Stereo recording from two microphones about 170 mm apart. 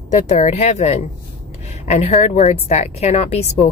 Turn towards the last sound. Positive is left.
turn(degrees=40)  # may be behind; listen again after turning